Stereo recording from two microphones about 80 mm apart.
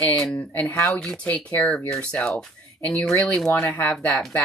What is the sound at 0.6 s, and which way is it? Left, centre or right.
Speech, left.